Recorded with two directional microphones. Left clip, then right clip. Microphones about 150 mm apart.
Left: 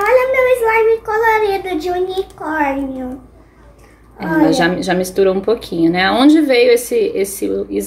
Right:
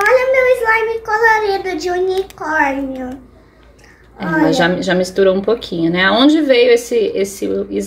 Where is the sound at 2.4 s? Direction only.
10° right (ahead or behind).